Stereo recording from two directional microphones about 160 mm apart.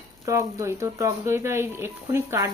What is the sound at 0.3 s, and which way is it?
Speech, 20° right (ahead or behind).